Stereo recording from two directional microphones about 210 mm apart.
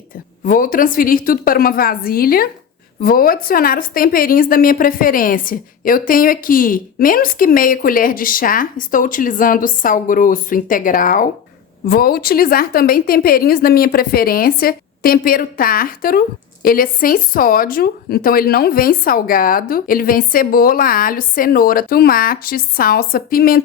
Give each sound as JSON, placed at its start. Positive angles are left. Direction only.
{"t": 0.4, "sound": "a woman's voice", "side_deg": 40}